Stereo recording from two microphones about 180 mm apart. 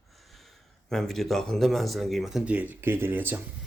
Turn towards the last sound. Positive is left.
turn(degrees=-10)  # may be behind; listen again after turning